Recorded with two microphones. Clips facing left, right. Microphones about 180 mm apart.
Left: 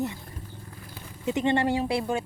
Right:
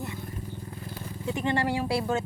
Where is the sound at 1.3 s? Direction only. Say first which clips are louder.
Left 4 dB; 20° left (ahead or behind).